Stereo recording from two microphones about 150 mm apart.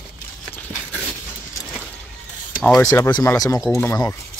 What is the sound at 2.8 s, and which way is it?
Speech, 20° left (ahead or behind).